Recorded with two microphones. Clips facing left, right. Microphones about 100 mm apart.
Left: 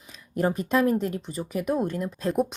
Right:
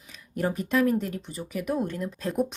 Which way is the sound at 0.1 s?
25° left (ahead or behind).